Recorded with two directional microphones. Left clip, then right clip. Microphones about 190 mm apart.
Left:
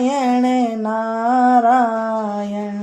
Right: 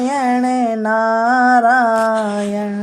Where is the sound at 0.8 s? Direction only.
45° right (ahead or behind).